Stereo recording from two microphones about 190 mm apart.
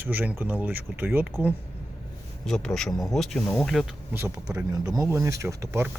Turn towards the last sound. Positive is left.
turn(degrees=-15)  # may be behind; listen again after turning